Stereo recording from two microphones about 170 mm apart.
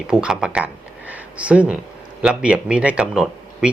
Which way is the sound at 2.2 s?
5° right (ahead or behind).